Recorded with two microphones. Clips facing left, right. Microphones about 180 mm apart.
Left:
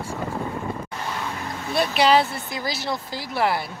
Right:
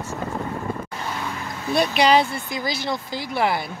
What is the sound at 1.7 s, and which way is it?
Speech, 5° left (ahead or behind).